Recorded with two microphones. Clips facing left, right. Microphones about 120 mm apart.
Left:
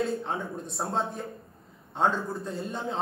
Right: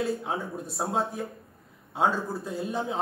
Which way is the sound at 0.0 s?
5° right (ahead or behind).